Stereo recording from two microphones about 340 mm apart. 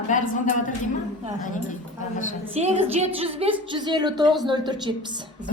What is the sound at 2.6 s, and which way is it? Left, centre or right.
A woman's voice, centre.